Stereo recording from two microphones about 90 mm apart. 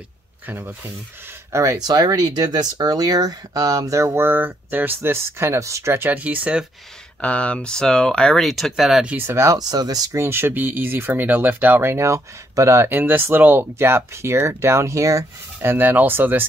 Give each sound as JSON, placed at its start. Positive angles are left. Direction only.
{"t": 0.5, "sound": "speech", "side_deg": -25}
{"t": 1.8, "sound": "speech", "side_deg": -45}
{"t": 6.0, "sound": "speech", "side_deg": -15}
{"t": 7.2, "sound": "speech", "side_deg": 15}
{"t": 9.0, "sound": "speech", "side_deg": -20}
{"t": 9.5, "sound": "speech", "side_deg": -45}
{"t": 10.2, "sound": "speech", "side_deg": -25}